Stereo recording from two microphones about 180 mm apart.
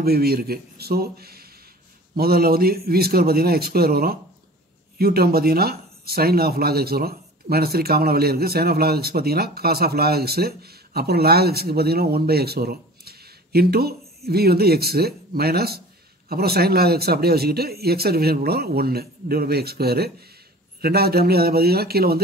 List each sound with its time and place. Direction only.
0.0 s speech: 60° right (ahead or behind)